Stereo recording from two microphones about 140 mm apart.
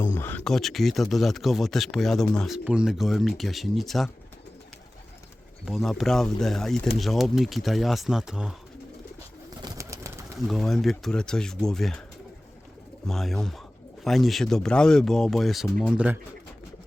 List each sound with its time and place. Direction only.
0.0 s a sound: 15° left (ahead or behind)
0.4 s speech: centre (ahead or behind)
5.6 s speech: centre (ahead or behind)
9.6 s bird: 25° right (ahead or behind)
10.3 s speech: centre (ahead or behind)
13.1 s speech: centre (ahead or behind)